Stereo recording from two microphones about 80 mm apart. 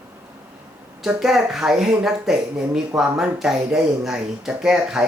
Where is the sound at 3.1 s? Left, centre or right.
Centre.